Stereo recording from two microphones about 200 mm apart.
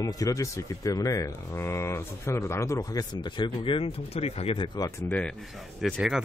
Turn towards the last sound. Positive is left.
turn(degrees=0)  # may be behind; listen again after turning